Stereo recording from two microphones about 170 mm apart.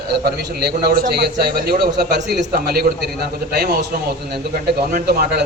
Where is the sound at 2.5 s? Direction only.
60° right (ahead or behind).